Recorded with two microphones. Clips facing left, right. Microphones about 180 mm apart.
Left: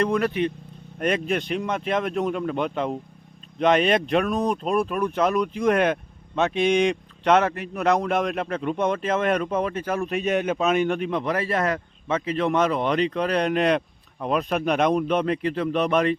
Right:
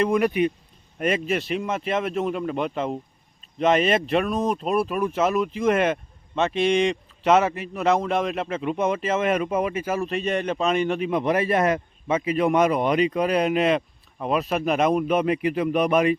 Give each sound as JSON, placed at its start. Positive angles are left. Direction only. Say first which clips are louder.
{"t": 0.0, "sound": "a man's voice", "louder": "right 2 dB", "side_deg": -10}
{"t": 11.1, "sound": "a man's voice", "louder": "right 3 dB", "side_deg": -20}